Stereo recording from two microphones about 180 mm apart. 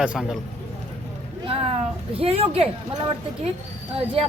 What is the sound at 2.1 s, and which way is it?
Speech, 35° right (ahead or behind).